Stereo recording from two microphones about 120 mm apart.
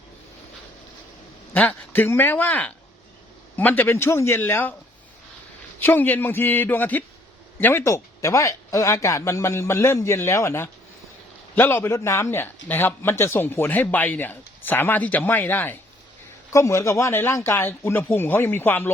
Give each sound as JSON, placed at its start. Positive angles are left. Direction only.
{"t": 1.5, "sound": "speech", "side_deg": 15}
{"t": 5.8, "sound": "speech", "side_deg": 15}